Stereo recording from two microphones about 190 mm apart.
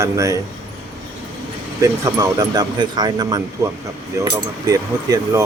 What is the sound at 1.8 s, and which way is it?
Speech, 15° right (ahead or behind).